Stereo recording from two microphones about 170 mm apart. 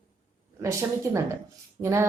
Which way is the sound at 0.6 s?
20° right (ahead or behind).